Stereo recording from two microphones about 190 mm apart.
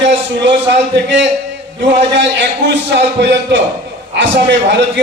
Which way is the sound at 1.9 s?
70° right (ahead or behind).